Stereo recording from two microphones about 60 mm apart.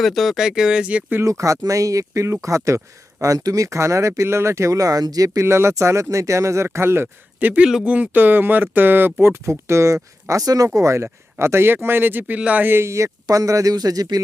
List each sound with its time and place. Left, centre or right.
0.0 s speech: centre
1.2 s speech: right
5.4 s speech: right
6.7 s speech: right
7.3 s speech: right
7.6 s speech: centre
7.9 s speech: right
9.2 s speech: right
10.8 s speech: right
12.6 s speech: right
12.9 s speech: right